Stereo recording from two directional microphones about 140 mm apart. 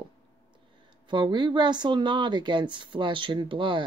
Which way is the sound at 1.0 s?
35° right (ahead or behind).